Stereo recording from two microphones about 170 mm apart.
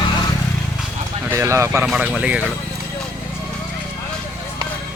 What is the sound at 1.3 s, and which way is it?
Speech, 15° right (ahead or behind).